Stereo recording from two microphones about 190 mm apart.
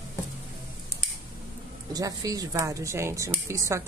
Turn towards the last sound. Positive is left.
turn(degrees=-15)  # may be behind; listen again after turning